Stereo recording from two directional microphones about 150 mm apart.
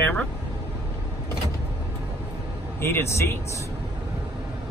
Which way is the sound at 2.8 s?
15° left (ahead or behind).